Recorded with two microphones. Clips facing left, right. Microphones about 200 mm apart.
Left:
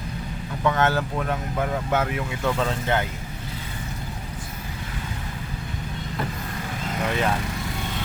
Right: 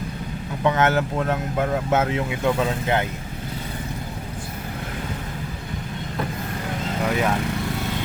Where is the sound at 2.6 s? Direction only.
15° right (ahead or behind).